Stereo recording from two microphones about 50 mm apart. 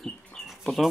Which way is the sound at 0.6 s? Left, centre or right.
Centre.